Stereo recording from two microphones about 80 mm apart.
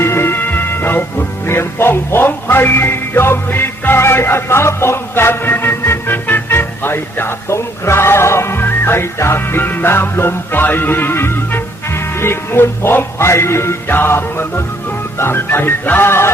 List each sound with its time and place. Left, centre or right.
0.0 s music: left
15.2 s speech: left